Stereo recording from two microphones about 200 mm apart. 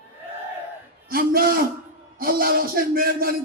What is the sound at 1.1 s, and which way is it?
A man's voice, 45° right (ahead or behind).